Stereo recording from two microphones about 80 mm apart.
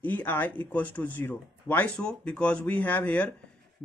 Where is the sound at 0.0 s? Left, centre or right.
Left.